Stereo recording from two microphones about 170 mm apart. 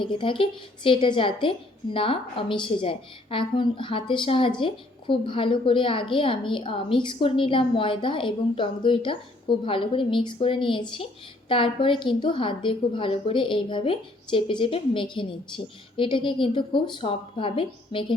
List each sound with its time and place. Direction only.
0.0 s a woman's voice: 30° left (ahead or behind)